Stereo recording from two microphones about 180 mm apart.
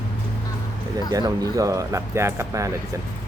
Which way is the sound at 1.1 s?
20° right (ahead or behind).